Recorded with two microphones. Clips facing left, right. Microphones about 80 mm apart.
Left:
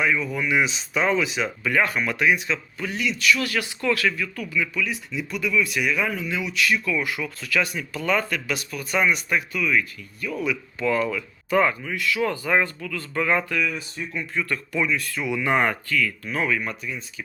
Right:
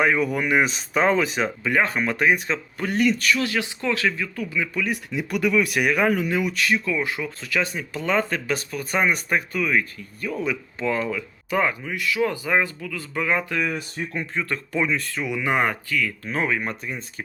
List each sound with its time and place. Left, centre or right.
0.0 s speech: right
1.6 s speech: right
3.3 s speech: right
4.7 s speech: right
5.1 s speech: right
6.6 s speech: right; by 13.4 s centre
13.4 s speech: right
13.7 s speech: right
14.2 s speech: right
15.2 s speech: centre
16.8 s speech: right